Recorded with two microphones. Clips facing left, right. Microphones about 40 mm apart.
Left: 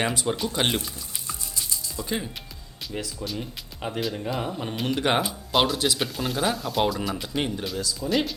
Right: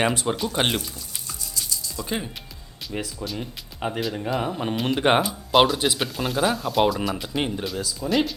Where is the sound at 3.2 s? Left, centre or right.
Centre.